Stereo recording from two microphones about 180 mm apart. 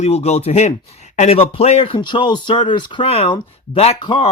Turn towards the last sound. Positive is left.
turn(degrees=25)  # may be behind; listen again after turning